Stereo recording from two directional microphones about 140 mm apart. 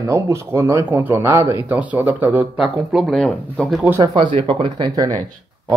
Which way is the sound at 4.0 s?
35° right (ahead or behind).